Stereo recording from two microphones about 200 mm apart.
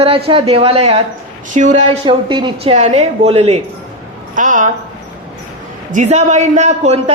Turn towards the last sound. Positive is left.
turn(degrees=-35)  # may be behind; listen again after turning